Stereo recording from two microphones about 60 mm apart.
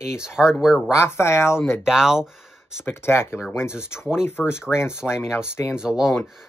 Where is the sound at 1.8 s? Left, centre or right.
Centre.